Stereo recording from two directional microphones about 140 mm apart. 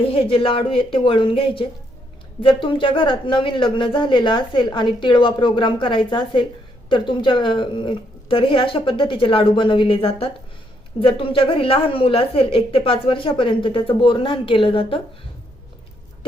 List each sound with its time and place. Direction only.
0.1 s a woman's voice: 40° left (ahead or behind)